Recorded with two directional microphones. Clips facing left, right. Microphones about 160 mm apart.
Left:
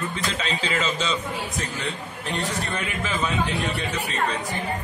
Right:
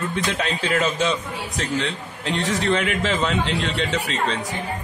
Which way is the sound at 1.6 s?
90° right.